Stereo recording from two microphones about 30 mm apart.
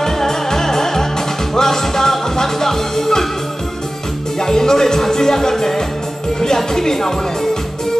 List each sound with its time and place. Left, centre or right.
0.0 s music: centre
4.4 s music: centre
6.4 s speech: centre